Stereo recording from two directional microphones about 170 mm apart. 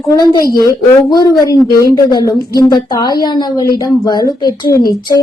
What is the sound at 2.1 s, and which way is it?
A woman's voice, 25° left (ahead or behind).